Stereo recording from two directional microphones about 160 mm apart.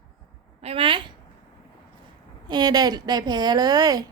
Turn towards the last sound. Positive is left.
turn(degrees=-25)  # may be behind; listen again after turning